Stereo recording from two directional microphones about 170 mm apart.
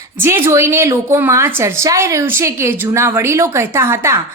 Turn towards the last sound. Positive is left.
turn(degrees=-15)  # may be behind; listen again after turning